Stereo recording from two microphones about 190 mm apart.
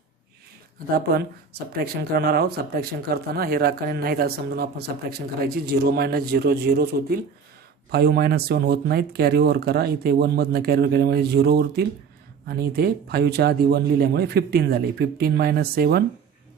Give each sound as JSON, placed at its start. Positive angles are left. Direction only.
{"t": 0.9, "sound": "speech", "side_deg": -55}